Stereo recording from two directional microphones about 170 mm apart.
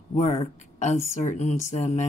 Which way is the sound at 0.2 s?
45° left (ahead or behind).